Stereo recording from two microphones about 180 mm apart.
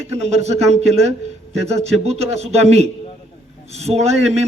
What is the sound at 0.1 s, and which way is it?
A man's voice, 35° right (ahead or behind).